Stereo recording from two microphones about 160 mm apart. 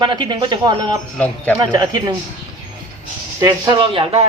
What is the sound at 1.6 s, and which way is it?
Speech, 25° right (ahead or behind).